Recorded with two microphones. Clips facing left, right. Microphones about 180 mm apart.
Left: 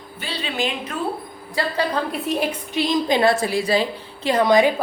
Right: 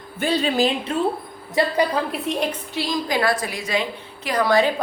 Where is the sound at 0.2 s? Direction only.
45° right (ahead or behind).